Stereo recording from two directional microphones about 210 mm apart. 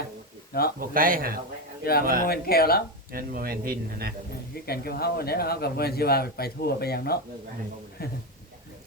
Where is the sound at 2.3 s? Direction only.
45° left (ahead or behind).